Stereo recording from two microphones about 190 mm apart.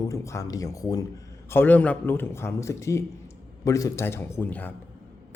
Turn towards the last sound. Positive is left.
turn(degrees=10)  # may be behind; listen again after turning